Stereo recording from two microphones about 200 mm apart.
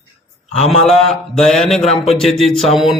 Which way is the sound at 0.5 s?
30° left (ahead or behind).